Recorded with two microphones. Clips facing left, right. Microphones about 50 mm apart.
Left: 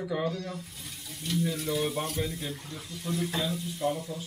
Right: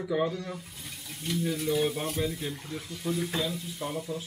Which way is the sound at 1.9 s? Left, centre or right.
Centre.